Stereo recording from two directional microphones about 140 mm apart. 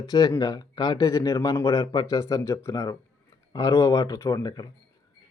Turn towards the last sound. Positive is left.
turn(degrees=30)  # may be behind; listen again after turning